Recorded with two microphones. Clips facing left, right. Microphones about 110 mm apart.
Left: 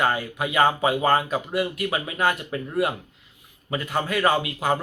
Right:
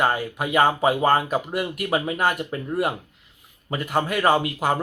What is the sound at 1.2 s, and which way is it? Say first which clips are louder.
Speech: even; 45° right (ahead or behind).